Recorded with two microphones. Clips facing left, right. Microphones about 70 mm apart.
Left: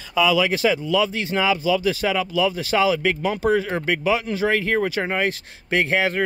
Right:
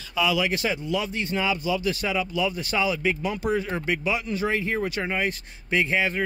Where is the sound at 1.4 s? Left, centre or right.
Left.